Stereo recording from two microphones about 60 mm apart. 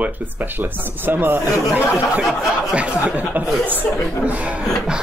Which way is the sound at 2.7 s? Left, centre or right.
Right.